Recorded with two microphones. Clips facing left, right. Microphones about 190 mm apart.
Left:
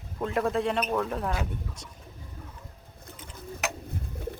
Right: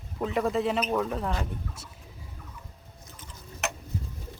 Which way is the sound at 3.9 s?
55° left (ahead or behind).